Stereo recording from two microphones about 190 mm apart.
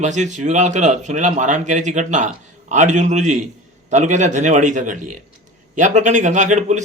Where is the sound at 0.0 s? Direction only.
40° right (ahead or behind).